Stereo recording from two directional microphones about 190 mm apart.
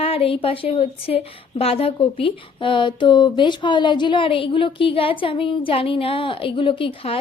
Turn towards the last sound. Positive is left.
turn(degrees=30)  # may be behind; listen again after turning